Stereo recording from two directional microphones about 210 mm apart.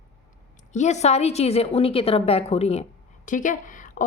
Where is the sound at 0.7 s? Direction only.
35° left (ahead or behind).